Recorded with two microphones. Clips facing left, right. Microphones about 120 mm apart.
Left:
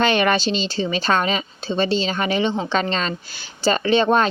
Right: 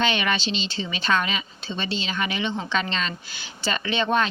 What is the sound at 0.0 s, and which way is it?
Speech, 45° left (ahead or behind).